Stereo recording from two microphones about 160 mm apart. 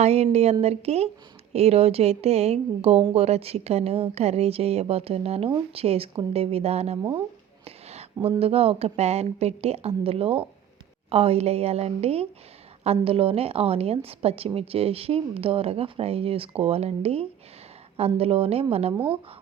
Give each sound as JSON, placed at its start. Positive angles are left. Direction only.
{"t": 0.0, "sound": "a woman's voice", "side_deg": -40}
{"t": 7.6, "sound": "a sound", "side_deg": -40}
{"t": 8.4, "sound": "a woman's voice", "side_deg": -40}